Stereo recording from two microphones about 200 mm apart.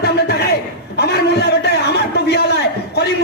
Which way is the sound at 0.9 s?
55° left (ahead or behind).